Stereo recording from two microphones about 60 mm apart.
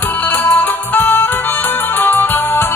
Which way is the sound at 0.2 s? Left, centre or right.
Left.